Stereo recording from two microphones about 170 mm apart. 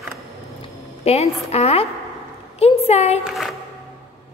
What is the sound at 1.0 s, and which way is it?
A woman's voice, 40° left (ahead or behind).